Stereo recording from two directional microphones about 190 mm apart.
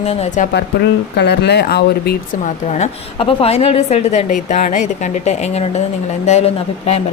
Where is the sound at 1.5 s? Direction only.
60° left (ahead or behind).